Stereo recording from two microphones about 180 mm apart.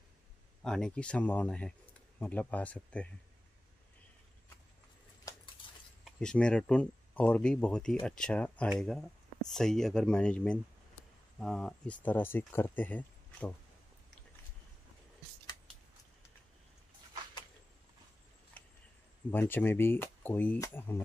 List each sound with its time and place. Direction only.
0.7 s speech: 5° left (ahead or behind)
5.3 s dishes: 20° left (ahead or behind)
5.6 s a sound: 30° left (ahead or behind)
6.0 s speech: 5° left (ahead or behind)
18.6 s a sound: 10° left (ahead or behind)
19.3 s speech: 10° left (ahead or behind)